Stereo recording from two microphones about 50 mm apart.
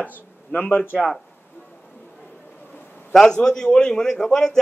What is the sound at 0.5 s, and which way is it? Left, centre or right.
Speech, left.